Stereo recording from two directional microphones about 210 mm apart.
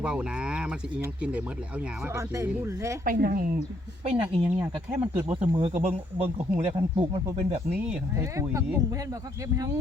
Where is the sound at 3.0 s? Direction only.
45° right (ahead or behind).